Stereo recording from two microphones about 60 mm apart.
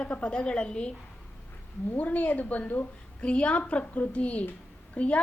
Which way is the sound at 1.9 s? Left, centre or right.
Left.